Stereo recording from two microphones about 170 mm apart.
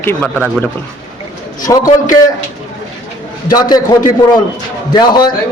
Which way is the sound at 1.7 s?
20° left (ahead or behind).